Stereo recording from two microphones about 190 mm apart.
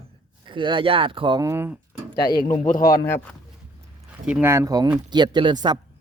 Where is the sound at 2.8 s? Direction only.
15° left (ahead or behind).